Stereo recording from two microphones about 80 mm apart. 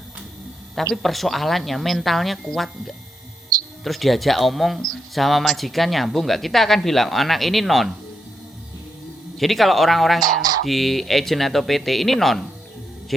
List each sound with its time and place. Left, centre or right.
1.0 s speech: centre
3.5 s music: right
3.8 s speech: centre
9.4 s speech: centre
10.2 s a sound: right
10.7 s speech: centre